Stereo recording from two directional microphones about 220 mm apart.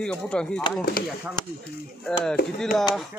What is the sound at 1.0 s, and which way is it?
Speech, 40° left (ahead or behind).